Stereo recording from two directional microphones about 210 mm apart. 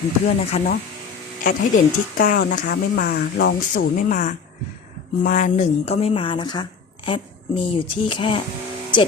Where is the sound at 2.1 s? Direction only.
45° left (ahead or behind); by 6.6 s 20° left (ahead or behind).